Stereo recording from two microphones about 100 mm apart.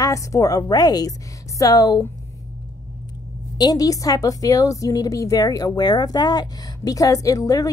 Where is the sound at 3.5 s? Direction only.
40° left (ahead or behind).